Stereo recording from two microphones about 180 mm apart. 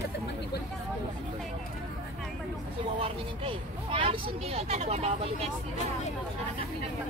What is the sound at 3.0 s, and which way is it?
Speech, 30° right (ahead or behind).